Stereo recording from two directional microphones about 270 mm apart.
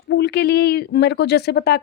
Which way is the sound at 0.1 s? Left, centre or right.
Left.